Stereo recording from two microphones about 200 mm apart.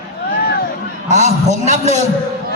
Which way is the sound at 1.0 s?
35° right (ahead or behind).